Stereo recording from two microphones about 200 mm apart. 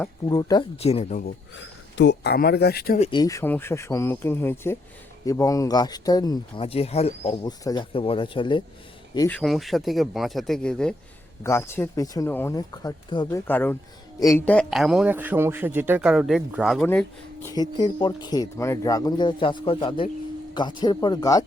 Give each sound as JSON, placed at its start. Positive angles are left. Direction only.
{"t": 0.3, "sound": "speech", "side_deg": 20}
{"t": 0.8, "sound": "speech", "side_deg": 30}
{"t": 1.2, "sound": "speech", "side_deg": 55}
{"t": 3.0, "sound": "speech", "side_deg": 20}
{"t": 9.1, "sound": "speech", "side_deg": 15}
{"t": 9.4, "sound": "a man's voice", "side_deg": 0}
{"t": 13.5, "sound": "a man's voice", "side_deg": 10}
{"t": 16.8, "sound": "speech", "side_deg": 10}
{"t": 17.5, "sound": "speech", "side_deg": 20}